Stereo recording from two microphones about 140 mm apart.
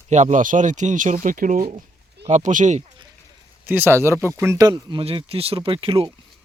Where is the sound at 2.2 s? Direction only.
60° right (ahead or behind).